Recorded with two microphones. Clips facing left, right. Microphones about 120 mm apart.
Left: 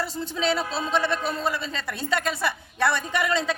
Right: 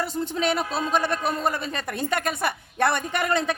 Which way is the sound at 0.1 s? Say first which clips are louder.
Right 1 dB; 55° right (ahead or behind).